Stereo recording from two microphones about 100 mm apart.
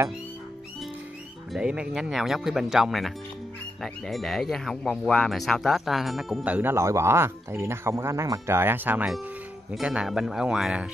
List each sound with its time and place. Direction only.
1.5 s speech: 10° right (ahead or behind)
6.4 s speech: 15° right (ahead or behind)
6.7 s speech: 30° right (ahead or behind); by 10.9 s 10° right (ahead or behind)